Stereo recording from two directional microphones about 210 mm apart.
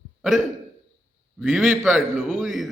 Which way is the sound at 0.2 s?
Centre (ahead or behind).